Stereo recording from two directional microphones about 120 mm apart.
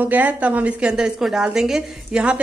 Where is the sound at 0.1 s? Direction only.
15° right (ahead or behind).